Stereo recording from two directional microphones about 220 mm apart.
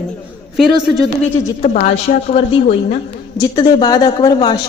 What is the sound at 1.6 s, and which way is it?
A woman's voice, 35° left (ahead or behind).